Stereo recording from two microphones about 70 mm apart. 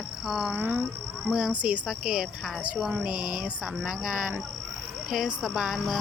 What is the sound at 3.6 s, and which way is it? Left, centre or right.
Speech, centre.